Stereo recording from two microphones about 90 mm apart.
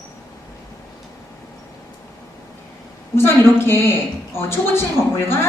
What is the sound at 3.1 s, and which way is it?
A woman's voice, 25° left (ahead or behind).